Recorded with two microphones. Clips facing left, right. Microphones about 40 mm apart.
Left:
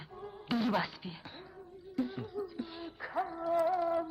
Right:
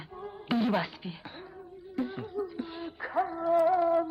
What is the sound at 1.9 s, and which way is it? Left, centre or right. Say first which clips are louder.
Music: right 3 dB; centre.